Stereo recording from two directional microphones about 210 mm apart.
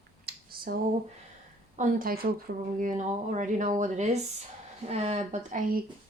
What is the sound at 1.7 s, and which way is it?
Speech, 40° right (ahead or behind).